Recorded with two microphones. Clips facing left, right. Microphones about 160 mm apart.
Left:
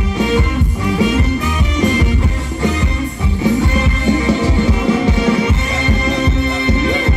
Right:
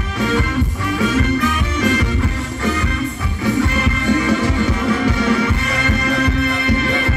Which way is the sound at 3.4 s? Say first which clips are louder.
Left 2 dB; 20° left (ahead or behind).